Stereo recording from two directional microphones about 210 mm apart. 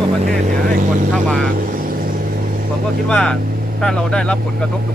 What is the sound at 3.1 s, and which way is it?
Speech, 5° left (ahead or behind).